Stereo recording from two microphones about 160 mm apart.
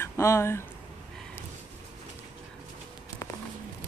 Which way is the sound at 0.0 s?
15° left (ahead or behind).